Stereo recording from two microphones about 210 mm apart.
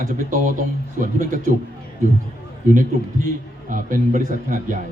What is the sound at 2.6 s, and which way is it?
A man's voice, 40° right (ahead or behind).